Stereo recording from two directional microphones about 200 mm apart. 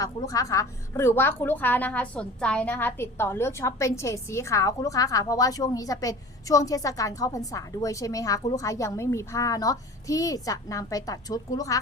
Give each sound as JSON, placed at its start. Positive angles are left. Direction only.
{"t": 0.0, "sound": "a woman's voice", "side_deg": 15}